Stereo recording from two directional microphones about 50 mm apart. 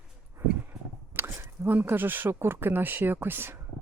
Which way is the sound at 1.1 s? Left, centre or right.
Right.